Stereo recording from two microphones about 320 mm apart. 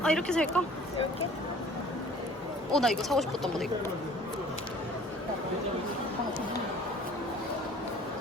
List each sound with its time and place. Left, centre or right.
0.0 s speech: centre
2.7 s speech: centre